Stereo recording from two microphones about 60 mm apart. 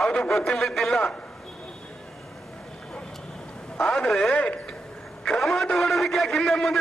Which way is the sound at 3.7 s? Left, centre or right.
Centre.